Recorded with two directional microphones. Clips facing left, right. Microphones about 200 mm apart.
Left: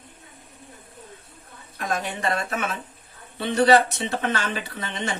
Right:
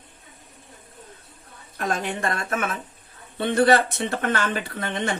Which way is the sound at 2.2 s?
50° right (ahead or behind).